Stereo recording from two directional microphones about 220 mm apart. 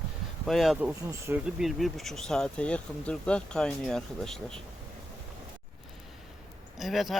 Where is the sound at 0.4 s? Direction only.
Centre (ahead or behind).